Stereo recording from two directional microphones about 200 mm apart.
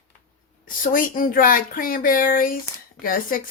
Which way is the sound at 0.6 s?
45° left (ahead or behind).